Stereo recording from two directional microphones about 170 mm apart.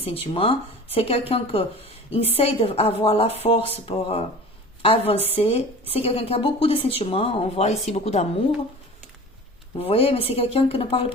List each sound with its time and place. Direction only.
0.0 s a woman's voice: 35° left (ahead or behind)
9.7 s a woman's voice: 35° left (ahead or behind)